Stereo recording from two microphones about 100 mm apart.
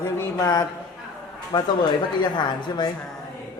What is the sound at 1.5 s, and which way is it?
A woman's voice, 50° left (ahead or behind).